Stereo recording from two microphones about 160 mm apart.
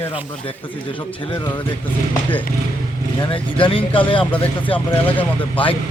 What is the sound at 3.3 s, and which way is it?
Speech, 35° left (ahead or behind).